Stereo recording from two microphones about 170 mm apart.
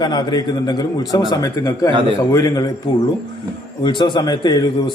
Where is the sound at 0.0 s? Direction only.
25° left (ahead or behind).